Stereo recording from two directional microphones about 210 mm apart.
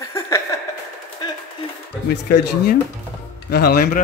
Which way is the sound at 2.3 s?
50° left (ahead or behind).